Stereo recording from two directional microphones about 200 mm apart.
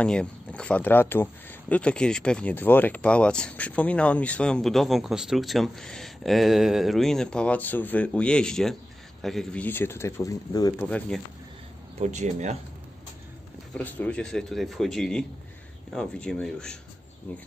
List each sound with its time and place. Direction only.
0.0 s speech: 5° left (ahead or behind)
10.8 s speech: 5° left (ahead or behind)
12.0 s speech: 35° right (ahead or behind)
13.7 s speech: 10° left (ahead or behind)